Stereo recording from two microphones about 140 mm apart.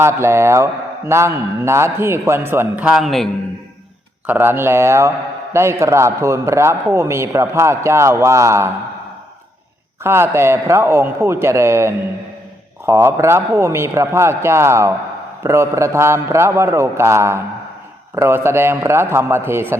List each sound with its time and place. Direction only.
0.0 s a man's voice: 20° right (ahead or behind); by 3.2 s centre (ahead or behind)
4.3 s a man's voice: 15° right (ahead or behind)
10.0 s a man's voice: 15° right (ahead or behind)